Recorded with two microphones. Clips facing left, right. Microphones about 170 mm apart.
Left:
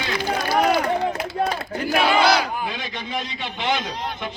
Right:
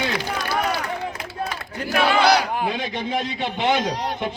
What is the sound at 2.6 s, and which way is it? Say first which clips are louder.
A man's voice: right 4 dB; 55° right (ahead or behind).